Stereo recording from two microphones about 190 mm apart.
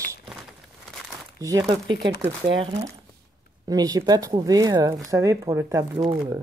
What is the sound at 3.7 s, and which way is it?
Speech, 20° right (ahead or behind).